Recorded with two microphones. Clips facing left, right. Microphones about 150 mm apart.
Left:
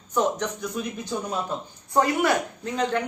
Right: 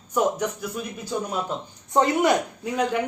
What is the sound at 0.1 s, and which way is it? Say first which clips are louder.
Speech: right 1 dB; 10° right (ahead or behind).